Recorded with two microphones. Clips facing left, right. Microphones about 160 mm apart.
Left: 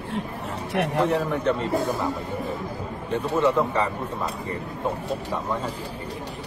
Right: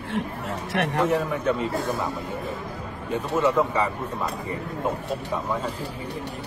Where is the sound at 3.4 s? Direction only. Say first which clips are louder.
Even; 5° right (ahead or behind).